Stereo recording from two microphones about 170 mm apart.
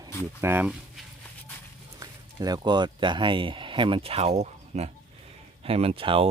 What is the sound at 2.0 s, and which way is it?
Speech, 20° right (ahead or behind).